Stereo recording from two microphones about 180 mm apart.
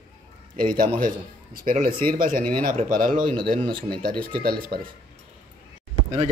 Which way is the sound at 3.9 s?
55° right (ahead or behind).